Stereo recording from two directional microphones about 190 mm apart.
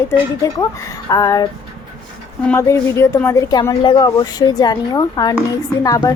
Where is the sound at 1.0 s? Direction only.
20° left (ahead or behind).